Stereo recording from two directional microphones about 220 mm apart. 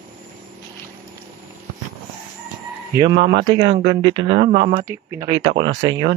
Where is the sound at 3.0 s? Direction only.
20° right (ahead or behind).